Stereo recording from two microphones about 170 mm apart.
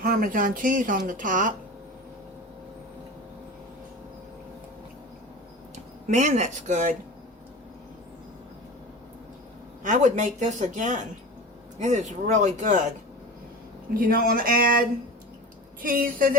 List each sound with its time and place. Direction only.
0.0 s speech: 55° right (ahead or behind)
5.7 s speech: 45° right (ahead or behind)
9.8 s speech: 45° right (ahead or behind)
13.9 s speech: 55° right (ahead or behind)